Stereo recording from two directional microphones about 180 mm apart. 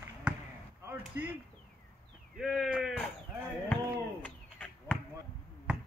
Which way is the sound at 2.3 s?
Centre (ahead or behind).